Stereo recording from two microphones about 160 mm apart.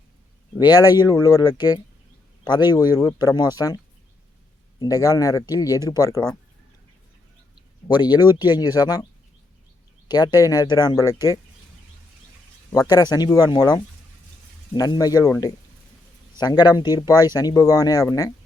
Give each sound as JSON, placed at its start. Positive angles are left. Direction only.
{"t": 0.6, "sound": "speech", "side_deg": 25}
{"t": 4.8, "sound": "speech", "side_deg": 20}
{"t": 7.9, "sound": "speech", "side_deg": 25}
{"t": 10.1, "sound": "speech", "side_deg": 25}
{"t": 12.9, "sound": "speech", "side_deg": 25}